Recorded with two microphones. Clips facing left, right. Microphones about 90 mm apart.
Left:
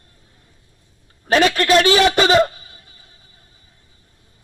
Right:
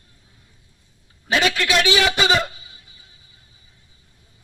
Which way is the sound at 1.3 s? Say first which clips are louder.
Left 6 dB; 45° left (ahead or behind).